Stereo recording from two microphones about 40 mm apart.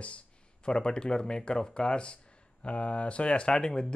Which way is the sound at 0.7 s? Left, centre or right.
Left.